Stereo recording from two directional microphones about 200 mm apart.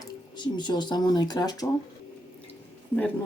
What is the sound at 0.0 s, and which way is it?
Speech, 20° left (ahead or behind).